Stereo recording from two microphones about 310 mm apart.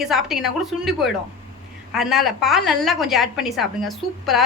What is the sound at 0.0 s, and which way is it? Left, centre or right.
Speech, centre.